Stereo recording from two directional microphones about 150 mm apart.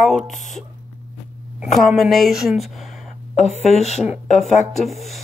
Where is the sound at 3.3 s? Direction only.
45° left (ahead or behind).